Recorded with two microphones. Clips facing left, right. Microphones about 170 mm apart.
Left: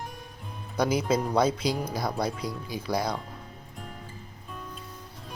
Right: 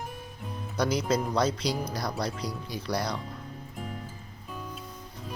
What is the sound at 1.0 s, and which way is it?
Speech, 5° left (ahead or behind).